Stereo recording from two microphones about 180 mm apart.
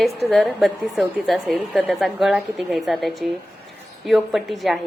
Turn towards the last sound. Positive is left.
turn(degrees=0)  # may be behind; listen again after turning